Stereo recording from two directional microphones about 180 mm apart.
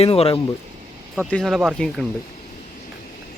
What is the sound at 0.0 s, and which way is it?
Speech, 35° left (ahead or behind).